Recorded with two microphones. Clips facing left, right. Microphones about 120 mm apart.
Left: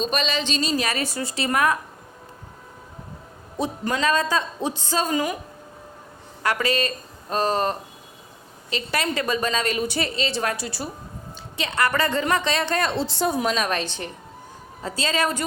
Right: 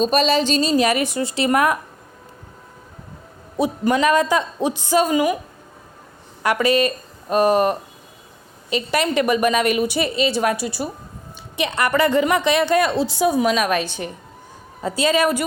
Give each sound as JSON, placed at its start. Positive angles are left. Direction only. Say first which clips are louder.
{"t": 0.0, "sound": "a woman's voice", "louder": "right 8 dB", "side_deg": -40}
{"t": 3.6, "sound": "a woman's voice", "louder": "right 6 dB", "side_deg": -15}
{"t": 6.4, "sound": "a woman's voice", "louder": "right 6 dB", "side_deg": -15}